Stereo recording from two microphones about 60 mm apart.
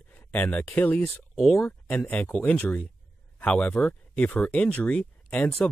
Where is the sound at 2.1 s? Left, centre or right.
Left.